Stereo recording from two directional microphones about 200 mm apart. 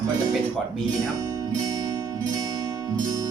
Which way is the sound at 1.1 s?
20° right (ahead or behind).